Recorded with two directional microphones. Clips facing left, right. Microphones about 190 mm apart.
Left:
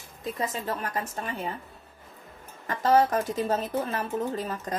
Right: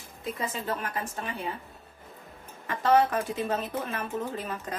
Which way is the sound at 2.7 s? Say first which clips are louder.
Left 1 dB; 40° left (ahead or behind).